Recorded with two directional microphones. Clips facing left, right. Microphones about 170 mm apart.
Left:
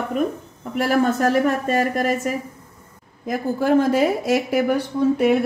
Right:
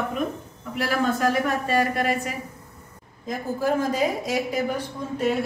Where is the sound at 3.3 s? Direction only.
70° left (ahead or behind).